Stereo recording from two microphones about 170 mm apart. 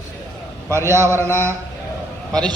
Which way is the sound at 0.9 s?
15° right (ahead or behind).